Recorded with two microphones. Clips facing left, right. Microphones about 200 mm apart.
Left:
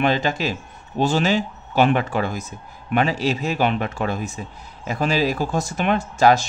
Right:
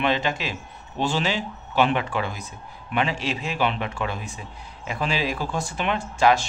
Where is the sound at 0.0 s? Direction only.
40° left (ahead or behind).